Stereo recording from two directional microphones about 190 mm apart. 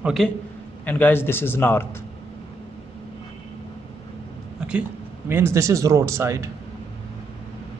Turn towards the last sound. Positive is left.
turn(degrees=-15)  # may be behind; listen again after turning